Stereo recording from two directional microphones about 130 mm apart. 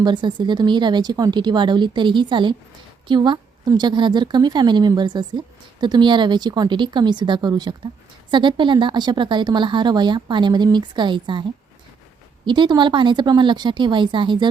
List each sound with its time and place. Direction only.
0.0 s a woman's voice: 35° right (ahead or behind)
12.5 s a woman's voice: 35° right (ahead or behind)